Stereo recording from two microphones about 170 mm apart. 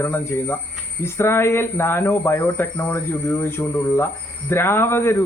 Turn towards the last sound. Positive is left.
turn(degrees=15)  # may be behind; listen again after turning